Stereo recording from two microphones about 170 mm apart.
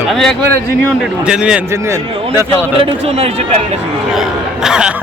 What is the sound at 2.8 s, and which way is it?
Speech, 35° right (ahead or behind).